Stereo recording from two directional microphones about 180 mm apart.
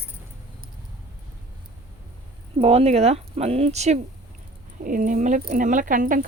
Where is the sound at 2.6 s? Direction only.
35° right (ahead or behind).